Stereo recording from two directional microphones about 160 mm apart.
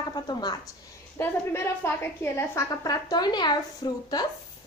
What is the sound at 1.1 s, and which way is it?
A woman's voice, 15° left (ahead or behind).